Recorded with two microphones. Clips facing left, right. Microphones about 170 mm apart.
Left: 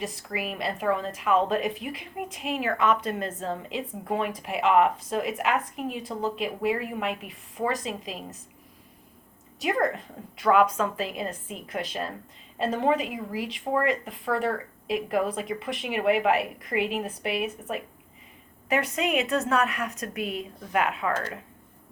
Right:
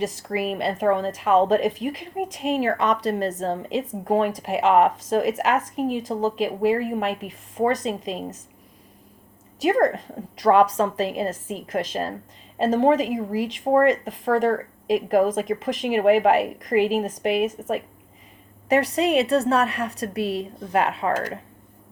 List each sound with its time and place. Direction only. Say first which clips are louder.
0.0 s speech: right 7 dB; 40° right (ahead or behind)
9.6 s speech: right 6 dB; 40° right (ahead or behind)
18.7 s speech: right 6 dB; 35° right (ahead or behind)
21.1 s speech: right 5 dB; 15° right (ahead or behind)